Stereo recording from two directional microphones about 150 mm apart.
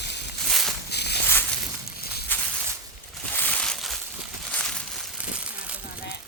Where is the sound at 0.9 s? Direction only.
90° left.